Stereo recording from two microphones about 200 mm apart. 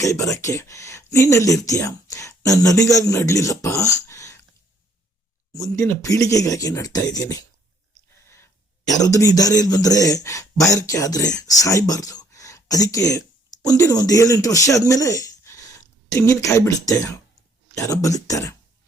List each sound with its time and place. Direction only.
0.0 s speech: 15° left (ahead or behind)
5.5 s a man's voice: 15° left (ahead or behind)